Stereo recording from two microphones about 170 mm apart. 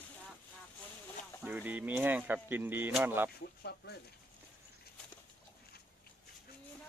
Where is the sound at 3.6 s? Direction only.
75° left (ahead or behind).